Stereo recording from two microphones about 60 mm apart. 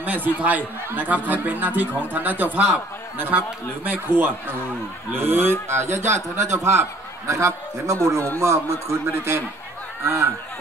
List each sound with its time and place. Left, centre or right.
0.0 s a man's voice: right